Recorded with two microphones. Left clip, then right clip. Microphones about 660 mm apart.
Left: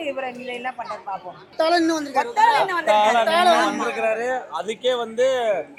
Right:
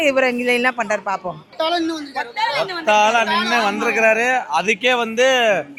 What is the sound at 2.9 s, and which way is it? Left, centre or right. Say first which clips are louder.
Speech: right 3 dB; right.